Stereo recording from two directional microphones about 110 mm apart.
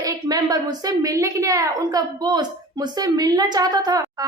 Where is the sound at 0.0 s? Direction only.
35° right (ahead or behind).